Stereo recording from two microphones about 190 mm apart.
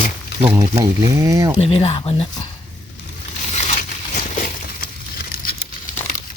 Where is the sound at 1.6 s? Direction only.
30° left (ahead or behind).